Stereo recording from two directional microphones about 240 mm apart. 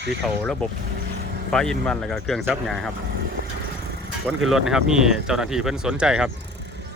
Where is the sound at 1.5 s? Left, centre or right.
Centre.